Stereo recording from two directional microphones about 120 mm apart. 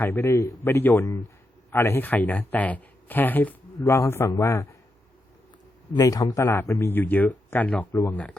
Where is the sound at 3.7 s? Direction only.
25° left (ahead or behind).